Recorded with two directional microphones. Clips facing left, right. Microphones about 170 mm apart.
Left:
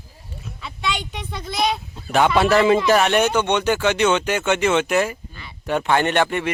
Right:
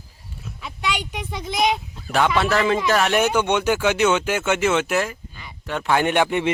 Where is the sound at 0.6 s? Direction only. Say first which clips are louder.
Even; 10° right (ahead or behind).